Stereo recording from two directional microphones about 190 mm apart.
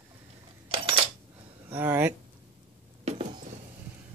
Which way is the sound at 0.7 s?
30° right (ahead or behind).